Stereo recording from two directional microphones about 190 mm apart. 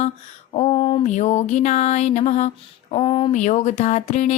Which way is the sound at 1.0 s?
35° left (ahead or behind).